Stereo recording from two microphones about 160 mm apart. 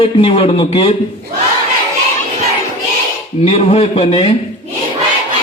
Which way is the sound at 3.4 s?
40° left (ahead or behind).